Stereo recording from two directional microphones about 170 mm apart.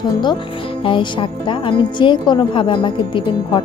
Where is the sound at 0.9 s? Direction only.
30° left (ahead or behind).